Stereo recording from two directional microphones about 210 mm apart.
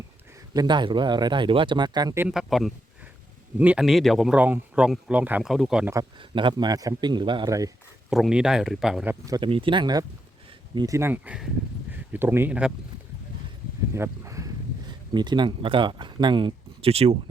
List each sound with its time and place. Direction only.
0.5 s a man's voice: 20° right (ahead or behind)
2.2 s speech: centre (ahead or behind)
5.9 s a man's voice: 20° right (ahead or behind)
8.1 s speech: 5° right (ahead or behind)
9.2 s a man's voice: 20° right (ahead or behind)
13.9 s speech: 15° right (ahead or behind); by 17.2 s 30° right (ahead or behind)